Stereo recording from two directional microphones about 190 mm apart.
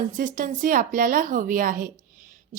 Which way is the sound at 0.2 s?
45° right (ahead or behind).